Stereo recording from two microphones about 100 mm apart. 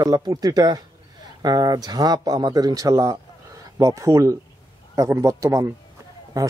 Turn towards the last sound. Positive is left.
turn(degrees=-35)  # may be behind; listen again after turning